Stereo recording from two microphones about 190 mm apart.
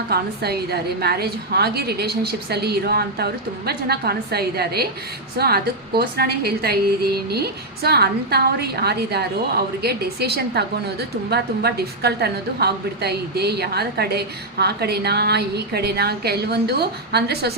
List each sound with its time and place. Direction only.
0.1 s a woman's voice: 55° right (ahead or behind)